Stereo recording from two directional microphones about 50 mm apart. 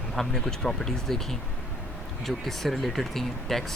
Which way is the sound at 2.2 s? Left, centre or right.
Centre.